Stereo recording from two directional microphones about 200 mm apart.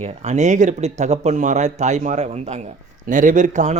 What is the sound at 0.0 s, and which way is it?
A man's voice, 35° right (ahead or behind).